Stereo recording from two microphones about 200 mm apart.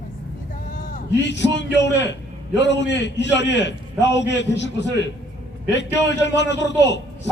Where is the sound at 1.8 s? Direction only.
60° left (ahead or behind).